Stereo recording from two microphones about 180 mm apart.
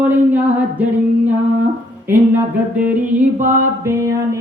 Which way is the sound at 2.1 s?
10° right (ahead or behind).